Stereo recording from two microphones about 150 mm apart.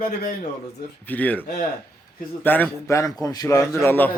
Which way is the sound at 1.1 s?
10° left (ahead or behind).